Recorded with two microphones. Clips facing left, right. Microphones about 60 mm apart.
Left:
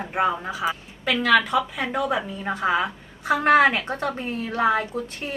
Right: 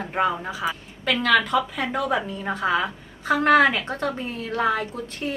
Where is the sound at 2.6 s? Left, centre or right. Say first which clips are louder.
Left 1 dB; centre.